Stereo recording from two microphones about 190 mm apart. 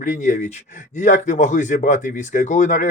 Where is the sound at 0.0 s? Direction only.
40° left (ahead or behind).